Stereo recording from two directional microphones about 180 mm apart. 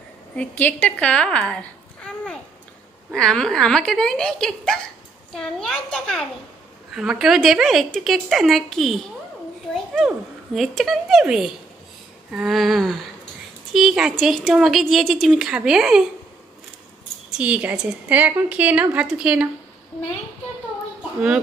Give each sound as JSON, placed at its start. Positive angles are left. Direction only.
{"t": 0.4, "sound": "a woman's voice", "side_deg": 10}
{"t": 3.2, "sound": "a woman's voice", "side_deg": 5}
{"t": 17.4, "sound": "a woman's voice", "side_deg": -10}